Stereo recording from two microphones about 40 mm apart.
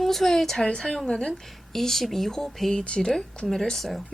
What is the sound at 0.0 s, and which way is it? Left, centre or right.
A woman's voice, centre.